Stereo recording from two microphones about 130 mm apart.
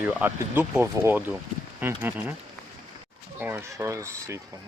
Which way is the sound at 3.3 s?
15° right (ahead or behind).